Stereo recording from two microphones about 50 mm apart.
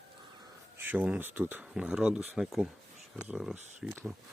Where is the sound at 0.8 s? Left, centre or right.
Right.